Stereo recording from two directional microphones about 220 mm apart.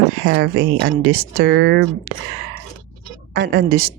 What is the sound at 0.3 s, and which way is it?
Speech, 50° right (ahead or behind).